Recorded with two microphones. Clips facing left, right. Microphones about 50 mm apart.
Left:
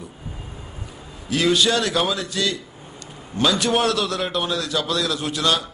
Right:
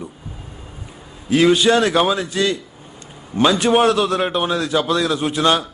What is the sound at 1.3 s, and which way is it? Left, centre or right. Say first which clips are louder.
A man's voice: right 5 dB; right.